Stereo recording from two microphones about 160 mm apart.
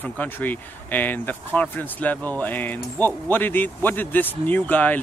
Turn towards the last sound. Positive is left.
turn(degrees=10)  # may be behind; listen again after turning